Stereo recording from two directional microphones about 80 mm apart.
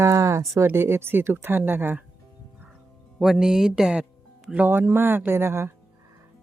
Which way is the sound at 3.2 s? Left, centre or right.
Centre.